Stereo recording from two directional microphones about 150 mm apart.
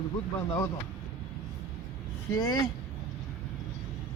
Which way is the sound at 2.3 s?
25° left (ahead or behind).